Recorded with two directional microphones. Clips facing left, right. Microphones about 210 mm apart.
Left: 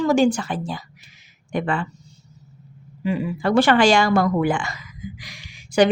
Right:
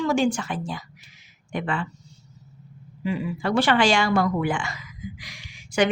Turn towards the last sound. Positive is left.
turn(degrees=35)  # may be behind; listen again after turning